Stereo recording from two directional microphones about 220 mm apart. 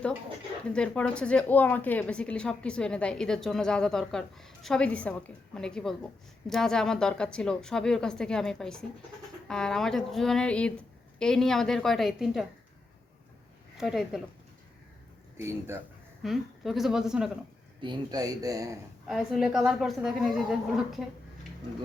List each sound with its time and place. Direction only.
0.7 s a woman's voice: 5° left (ahead or behind)
13.7 s a woman's voice: centre (ahead or behind)
15.4 s speech: 10° right (ahead or behind)
16.2 s a woman's voice: centre (ahead or behind)
17.7 s speech: 20° right (ahead or behind)
19.0 s a woman's voice: centre (ahead or behind)